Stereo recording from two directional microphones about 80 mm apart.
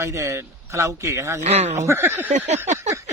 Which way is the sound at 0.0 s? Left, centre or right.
Right.